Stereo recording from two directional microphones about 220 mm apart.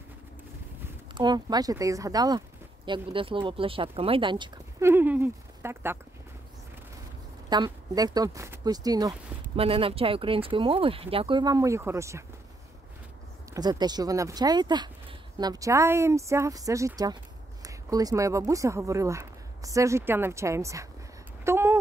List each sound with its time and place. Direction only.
1.1 s speech: 20° right (ahead or behind)
7.4 s speech: 20° right (ahead or behind)
13.5 s speech: 20° right (ahead or behind)
21.5 s a sound: 10° right (ahead or behind)